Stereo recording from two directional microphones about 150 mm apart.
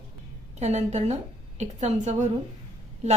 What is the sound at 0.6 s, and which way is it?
A woman's voice, 50° right (ahead or behind).